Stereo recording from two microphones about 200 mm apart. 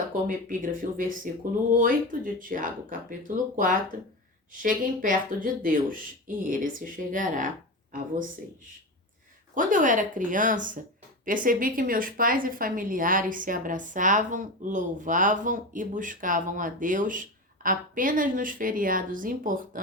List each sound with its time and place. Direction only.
0.3 s a woman's voice: 40° right (ahead or behind)
9.6 s a woman's voice: 40° right (ahead or behind)